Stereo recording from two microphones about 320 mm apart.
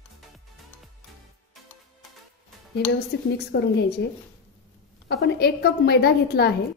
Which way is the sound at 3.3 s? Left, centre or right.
Left.